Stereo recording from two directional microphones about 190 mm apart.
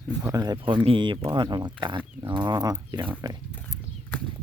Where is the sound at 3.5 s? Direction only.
5° left (ahead or behind).